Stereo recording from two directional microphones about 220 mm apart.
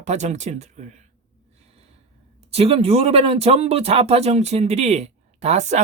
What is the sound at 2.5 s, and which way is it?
Speech, 25° right (ahead or behind).